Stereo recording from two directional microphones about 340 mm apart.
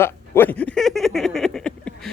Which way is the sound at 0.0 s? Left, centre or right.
Centre.